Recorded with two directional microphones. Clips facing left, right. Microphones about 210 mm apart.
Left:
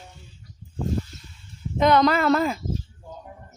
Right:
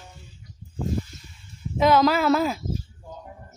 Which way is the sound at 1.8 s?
5° right (ahead or behind).